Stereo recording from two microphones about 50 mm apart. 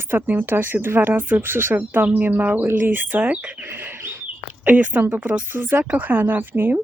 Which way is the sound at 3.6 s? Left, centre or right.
Right.